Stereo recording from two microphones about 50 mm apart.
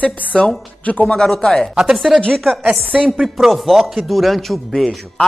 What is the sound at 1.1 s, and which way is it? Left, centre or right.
Speech, centre.